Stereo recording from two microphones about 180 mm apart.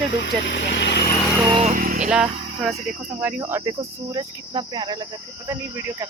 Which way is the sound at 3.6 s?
20° right (ahead or behind).